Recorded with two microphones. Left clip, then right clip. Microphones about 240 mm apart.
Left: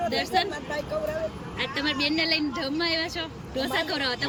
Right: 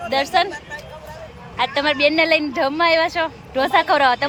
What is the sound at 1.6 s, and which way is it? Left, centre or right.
A woman's voice, centre.